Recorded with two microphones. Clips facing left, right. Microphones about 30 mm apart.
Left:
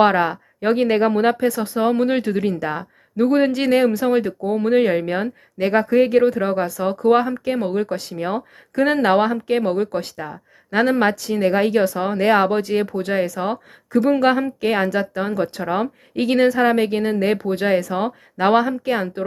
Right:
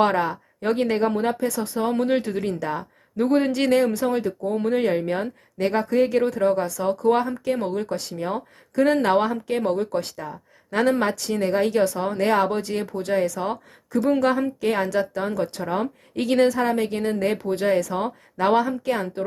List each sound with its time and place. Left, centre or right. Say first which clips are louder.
0.0 s speech: left 5 dB; left
0.9 s speech: left 5 dB; left
1.5 s speech: left 5 dB; left
3.2 s speech: left 3 dB; centre
4.0 s speech: left 4 dB; left
8.1 s speech: left 3 dB; left
10.2 s speech: left 3 dB; left
11.4 s speech: left 4 dB; left
19.2 s speech: left 2 dB; centre